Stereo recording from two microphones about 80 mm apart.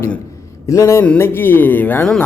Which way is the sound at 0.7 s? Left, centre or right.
Left.